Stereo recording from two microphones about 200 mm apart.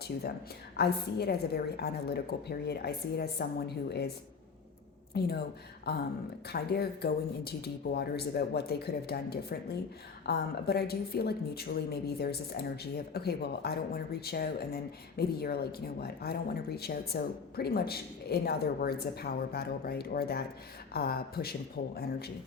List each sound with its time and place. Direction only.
0.8 s a woman's voice: 55° left (ahead or behind)
5.2 s a woman's voice: 55° left (ahead or behind)